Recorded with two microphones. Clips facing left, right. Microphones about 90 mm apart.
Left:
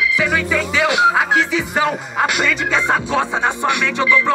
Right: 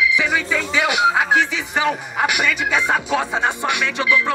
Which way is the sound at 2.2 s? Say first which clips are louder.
Left 2 dB; 10° right (ahead or behind).